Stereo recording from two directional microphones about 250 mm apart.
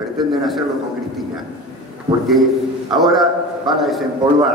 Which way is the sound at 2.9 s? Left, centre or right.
Centre.